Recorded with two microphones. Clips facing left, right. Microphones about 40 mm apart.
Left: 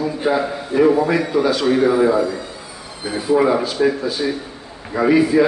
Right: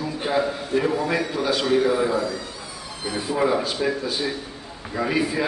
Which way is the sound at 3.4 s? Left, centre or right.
Centre.